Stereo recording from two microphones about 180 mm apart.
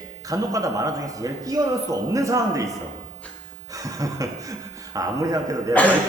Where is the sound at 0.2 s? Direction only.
20° right (ahead or behind).